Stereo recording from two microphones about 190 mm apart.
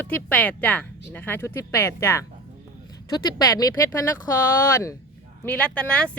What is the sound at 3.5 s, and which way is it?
Speech, 15° left (ahead or behind).